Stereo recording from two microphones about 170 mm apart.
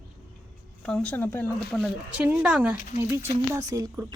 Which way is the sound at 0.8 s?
5° left (ahead or behind).